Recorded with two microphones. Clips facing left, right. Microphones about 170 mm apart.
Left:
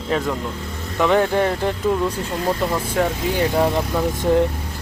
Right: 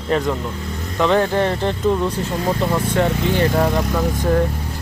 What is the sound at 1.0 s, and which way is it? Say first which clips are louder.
Speech: even; 10° left (ahead or behind).